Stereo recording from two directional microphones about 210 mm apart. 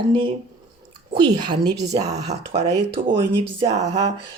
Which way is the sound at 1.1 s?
20° right (ahead or behind).